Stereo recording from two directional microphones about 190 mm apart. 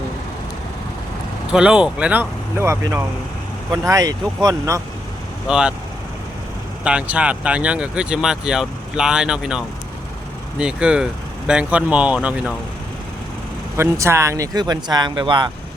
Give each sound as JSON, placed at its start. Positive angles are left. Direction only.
{"t": 1.5, "sound": "speech", "side_deg": -5}
{"t": 5.5, "sound": "speech", "side_deg": -5}
{"t": 6.8, "sound": "speech", "side_deg": -5}
{"t": 13.7, "sound": "speech", "side_deg": -15}